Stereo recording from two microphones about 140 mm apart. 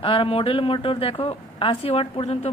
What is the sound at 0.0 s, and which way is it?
A woman's voice, 40° left (ahead or behind).